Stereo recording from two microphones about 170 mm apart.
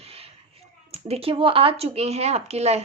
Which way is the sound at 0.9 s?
35° right (ahead or behind).